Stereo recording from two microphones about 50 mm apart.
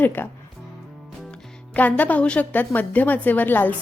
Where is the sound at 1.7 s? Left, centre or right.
Left.